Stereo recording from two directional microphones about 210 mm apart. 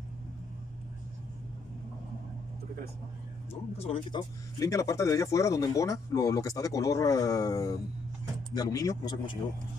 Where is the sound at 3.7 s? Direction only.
30° left (ahead or behind).